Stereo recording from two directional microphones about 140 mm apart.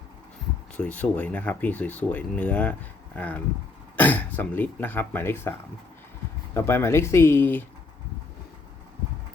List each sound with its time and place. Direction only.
0.8 s speech: 10° left (ahead or behind)